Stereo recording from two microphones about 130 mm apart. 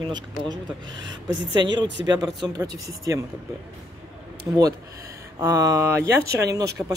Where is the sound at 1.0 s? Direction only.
35° right (ahead or behind).